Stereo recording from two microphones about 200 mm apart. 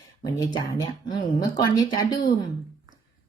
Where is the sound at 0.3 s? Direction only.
20° left (ahead or behind).